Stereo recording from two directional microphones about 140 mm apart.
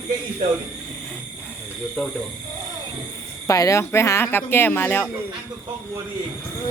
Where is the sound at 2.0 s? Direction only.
5° left (ahead or behind).